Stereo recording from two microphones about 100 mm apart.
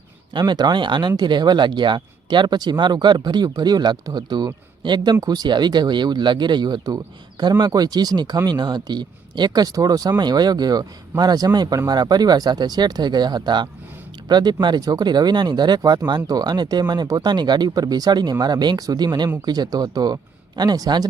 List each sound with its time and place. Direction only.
0.3 s speech: 45° right (ahead or behind)